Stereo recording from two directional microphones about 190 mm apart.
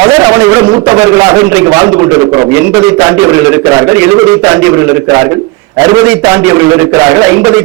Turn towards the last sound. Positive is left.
turn(degrees=-15)  # may be behind; listen again after turning